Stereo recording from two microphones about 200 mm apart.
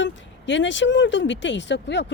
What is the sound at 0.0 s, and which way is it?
Speech, 65° left (ahead or behind).